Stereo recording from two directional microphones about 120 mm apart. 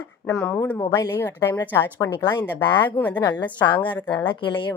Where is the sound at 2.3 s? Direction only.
40° left (ahead or behind).